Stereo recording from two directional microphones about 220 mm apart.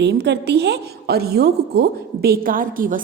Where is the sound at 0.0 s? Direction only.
50° right (ahead or behind).